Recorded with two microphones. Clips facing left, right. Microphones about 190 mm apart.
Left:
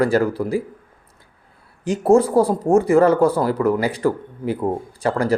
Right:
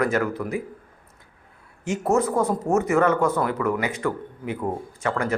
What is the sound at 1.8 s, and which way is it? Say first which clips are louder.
Speech: left 7 dB; 35° left (ahead or behind).